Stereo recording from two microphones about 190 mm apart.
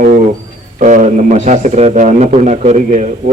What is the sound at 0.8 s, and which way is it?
A man's voice, 40° right (ahead or behind).